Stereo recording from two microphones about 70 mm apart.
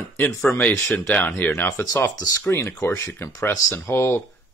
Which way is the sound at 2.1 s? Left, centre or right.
Left.